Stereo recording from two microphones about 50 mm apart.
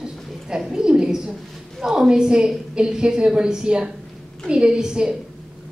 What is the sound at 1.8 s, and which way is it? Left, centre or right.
A woman's voice, centre.